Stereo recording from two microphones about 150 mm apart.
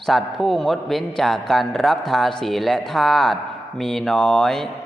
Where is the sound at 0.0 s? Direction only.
Centre (ahead or behind).